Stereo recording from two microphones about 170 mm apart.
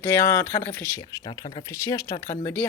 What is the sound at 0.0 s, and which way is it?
Speech, 15° left (ahead or behind).